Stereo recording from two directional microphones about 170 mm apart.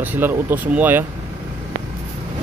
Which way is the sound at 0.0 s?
10° right (ahead or behind).